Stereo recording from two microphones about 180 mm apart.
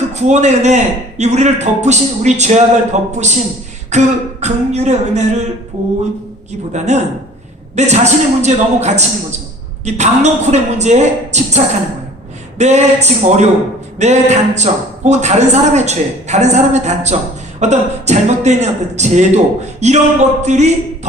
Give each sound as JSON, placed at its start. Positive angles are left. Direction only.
{"t": 0.1, "sound": "speech", "side_deg": -40}
{"t": 6.7, "sound": "speech", "side_deg": -40}